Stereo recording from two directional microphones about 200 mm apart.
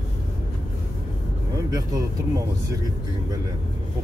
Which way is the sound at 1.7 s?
15° right (ahead or behind).